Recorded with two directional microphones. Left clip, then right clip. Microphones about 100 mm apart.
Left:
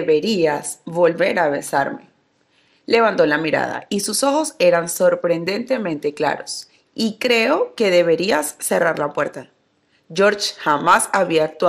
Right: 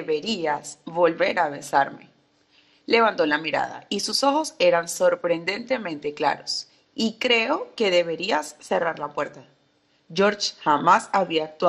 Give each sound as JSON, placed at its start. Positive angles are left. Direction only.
{"t": 0.0, "sound": "a woman's voice", "side_deg": 40}
{"t": 0.8, "sound": "a woman's voice", "side_deg": 35}